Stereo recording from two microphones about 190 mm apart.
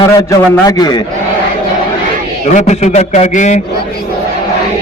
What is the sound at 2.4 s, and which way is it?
A man's voice, 40° left (ahead or behind).